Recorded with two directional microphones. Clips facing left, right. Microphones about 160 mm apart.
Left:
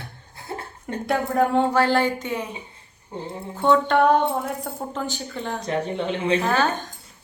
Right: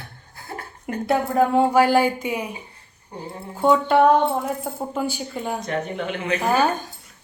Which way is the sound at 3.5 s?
10° right (ahead or behind).